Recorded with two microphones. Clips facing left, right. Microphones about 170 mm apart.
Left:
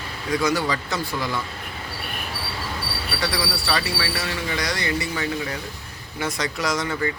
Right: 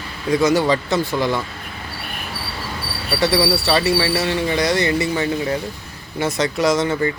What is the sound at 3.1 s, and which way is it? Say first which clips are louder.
Speech: right 10 dB; 25° right (ahead or behind).